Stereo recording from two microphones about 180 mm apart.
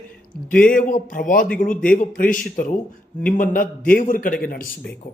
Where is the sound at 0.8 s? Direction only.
45° left (ahead or behind).